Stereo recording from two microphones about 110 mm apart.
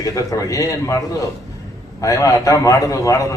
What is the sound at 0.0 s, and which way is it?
Speech, 30° left (ahead or behind).